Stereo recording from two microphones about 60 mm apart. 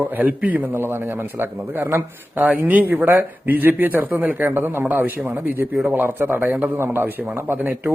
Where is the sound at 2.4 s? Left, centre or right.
Right.